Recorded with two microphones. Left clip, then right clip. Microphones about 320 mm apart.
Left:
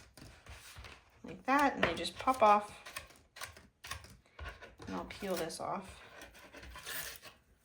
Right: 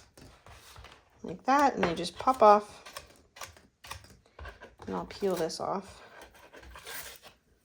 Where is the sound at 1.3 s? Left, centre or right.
Right.